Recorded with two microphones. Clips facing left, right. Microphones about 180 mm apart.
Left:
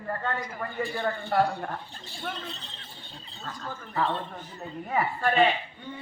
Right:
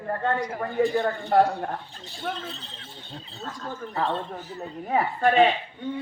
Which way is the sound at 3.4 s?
40° right (ahead or behind).